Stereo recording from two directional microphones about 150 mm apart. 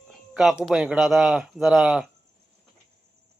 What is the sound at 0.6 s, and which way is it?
Speech, 5° right (ahead or behind).